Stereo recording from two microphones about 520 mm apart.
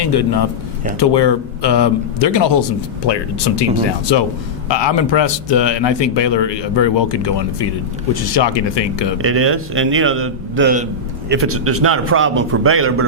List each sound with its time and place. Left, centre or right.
0.0 s speech: left
9.1 s a man's voice: right